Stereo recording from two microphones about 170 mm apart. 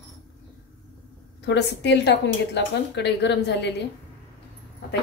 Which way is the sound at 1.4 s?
90° left.